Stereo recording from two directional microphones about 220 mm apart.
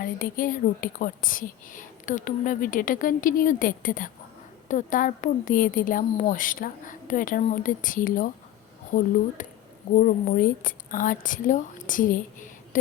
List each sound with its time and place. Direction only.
0.0 s a woman's voice: 40° left (ahead or behind)